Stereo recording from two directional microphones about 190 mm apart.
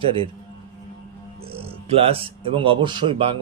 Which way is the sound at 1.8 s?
30° right (ahead or behind).